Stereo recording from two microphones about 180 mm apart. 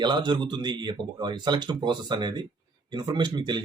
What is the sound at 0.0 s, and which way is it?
Speech, 25° right (ahead or behind).